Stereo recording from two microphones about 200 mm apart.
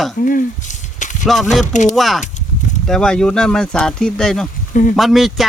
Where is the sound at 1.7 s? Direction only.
40° left (ahead or behind).